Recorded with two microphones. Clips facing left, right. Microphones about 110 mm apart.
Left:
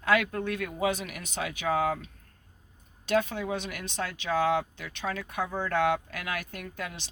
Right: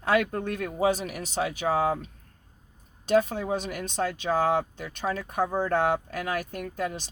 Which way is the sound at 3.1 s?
40° right (ahead or behind).